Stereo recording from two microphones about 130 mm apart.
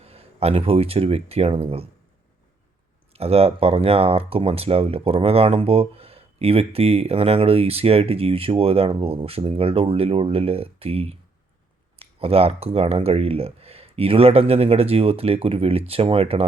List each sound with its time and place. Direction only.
0.0 s speech: 50° right (ahead or behind)
3.1 s speech: 50° right (ahead or behind)